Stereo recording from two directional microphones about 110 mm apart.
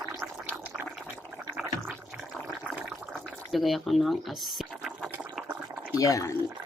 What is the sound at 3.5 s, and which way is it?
Fill, centre (ahead or behind).